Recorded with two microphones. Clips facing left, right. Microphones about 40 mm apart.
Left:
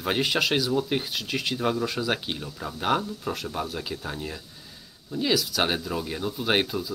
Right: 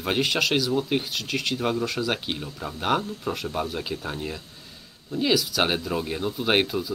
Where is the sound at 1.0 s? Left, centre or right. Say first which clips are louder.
Right 1 dB; centre.